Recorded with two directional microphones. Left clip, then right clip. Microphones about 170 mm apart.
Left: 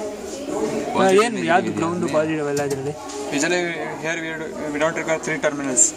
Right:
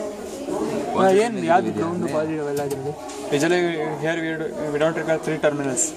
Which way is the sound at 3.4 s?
55° right (ahead or behind).